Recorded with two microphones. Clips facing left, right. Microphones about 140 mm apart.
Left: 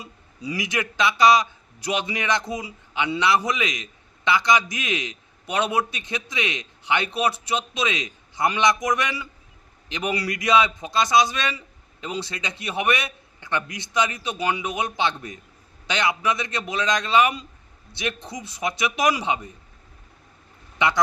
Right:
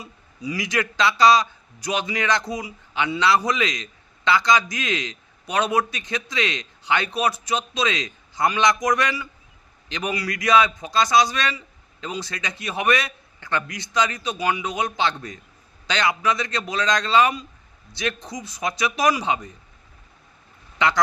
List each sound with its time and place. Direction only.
0.4 s a man's voice: 25° left (ahead or behind)
20.7 s speech: 20° left (ahead or behind)